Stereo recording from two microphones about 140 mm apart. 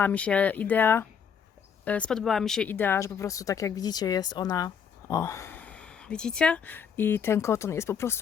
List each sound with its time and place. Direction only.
0.0 s speech: 10° left (ahead or behind)